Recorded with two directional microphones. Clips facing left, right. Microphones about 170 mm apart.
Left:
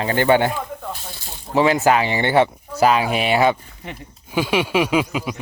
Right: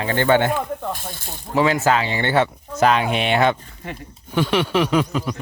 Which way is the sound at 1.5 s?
20° left (ahead or behind).